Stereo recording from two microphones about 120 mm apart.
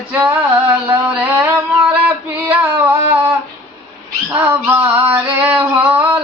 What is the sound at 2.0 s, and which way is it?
Female singing, 15° right (ahead or behind).